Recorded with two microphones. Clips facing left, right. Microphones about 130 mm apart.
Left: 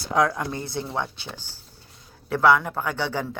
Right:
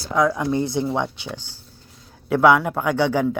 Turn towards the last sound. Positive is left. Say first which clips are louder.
# right 8 dB
turn(degrees=-10)  # may be behind; listen again after turning